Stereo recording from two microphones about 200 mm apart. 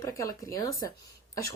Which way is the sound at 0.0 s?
15° left (ahead or behind).